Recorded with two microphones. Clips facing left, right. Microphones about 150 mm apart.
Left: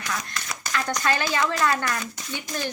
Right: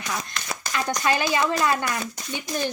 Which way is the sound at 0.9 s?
15° right (ahead or behind).